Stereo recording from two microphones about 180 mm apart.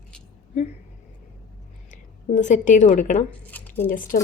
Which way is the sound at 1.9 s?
45° left (ahead or behind).